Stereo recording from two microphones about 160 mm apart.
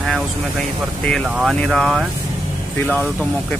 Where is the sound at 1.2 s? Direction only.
5° right (ahead or behind).